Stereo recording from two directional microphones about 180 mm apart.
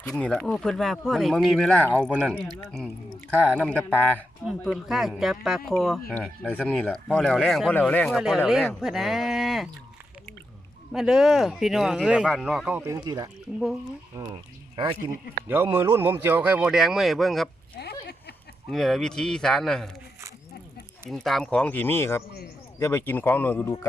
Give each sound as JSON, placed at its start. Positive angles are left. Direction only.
{"t": 0.0, "sound": "speech", "side_deg": 5}
{"t": 2.0, "sound": "speech", "side_deg": -5}
{"t": 10.9, "sound": "speech", "side_deg": -5}
{"t": 15.4, "sound": "speech", "side_deg": -15}
{"t": 17.8, "sound": "speech", "side_deg": 65}
{"t": 18.7, "sound": "speech", "side_deg": 0}
{"t": 21.1, "sound": "speech", "side_deg": 0}